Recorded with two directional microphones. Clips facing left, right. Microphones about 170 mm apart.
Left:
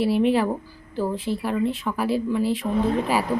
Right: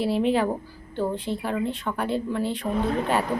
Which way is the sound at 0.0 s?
Centre (ahead or behind).